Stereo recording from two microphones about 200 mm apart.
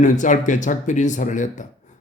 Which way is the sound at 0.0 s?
40° left (ahead or behind).